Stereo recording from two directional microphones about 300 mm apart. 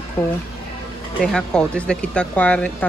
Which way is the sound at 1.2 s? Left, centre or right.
Centre.